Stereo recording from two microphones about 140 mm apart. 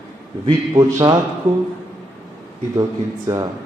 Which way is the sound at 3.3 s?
20° right (ahead or behind).